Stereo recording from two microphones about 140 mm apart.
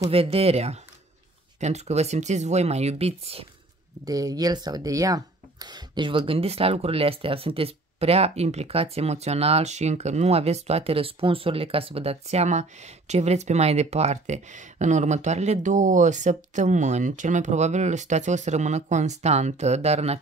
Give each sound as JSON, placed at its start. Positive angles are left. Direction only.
{"t": 0.1, "sound": "speech", "side_deg": -45}
{"t": 4.0, "sound": "speech", "side_deg": -25}